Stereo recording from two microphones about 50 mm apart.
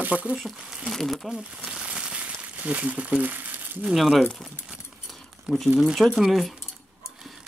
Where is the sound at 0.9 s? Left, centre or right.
Centre.